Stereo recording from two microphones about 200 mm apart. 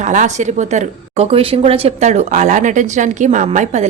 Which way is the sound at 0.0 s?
40° right (ahead or behind).